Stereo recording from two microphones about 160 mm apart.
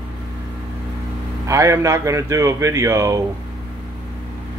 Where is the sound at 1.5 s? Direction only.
20° right (ahead or behind).